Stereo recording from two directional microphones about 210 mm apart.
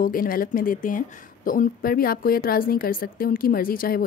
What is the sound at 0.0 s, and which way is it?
Speech, 45° left (ahead or behind).